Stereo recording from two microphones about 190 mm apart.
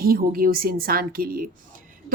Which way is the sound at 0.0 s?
50° right (ahead or behind).